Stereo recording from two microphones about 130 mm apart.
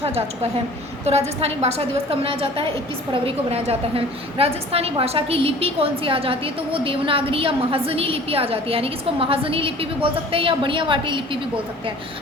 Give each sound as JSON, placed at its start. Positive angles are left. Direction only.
{"t": 0.0, "sound": "a woman's voice", "side_deg": -50}